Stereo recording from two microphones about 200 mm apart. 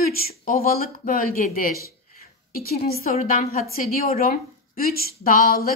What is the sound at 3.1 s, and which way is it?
A woman's voice, 35° left (ahead or behind).